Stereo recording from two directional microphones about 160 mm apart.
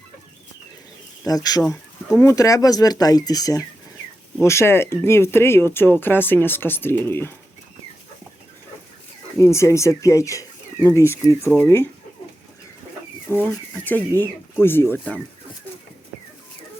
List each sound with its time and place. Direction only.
1.3 s speech: 25° left (ahead or behind)
9.4 s speech: 20° left (ahead or behind)
13.2 s speech: 15° left (ahead or behind)